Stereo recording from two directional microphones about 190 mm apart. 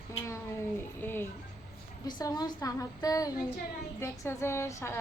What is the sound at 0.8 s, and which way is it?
A woman's voice, 10° left (ahead or behind).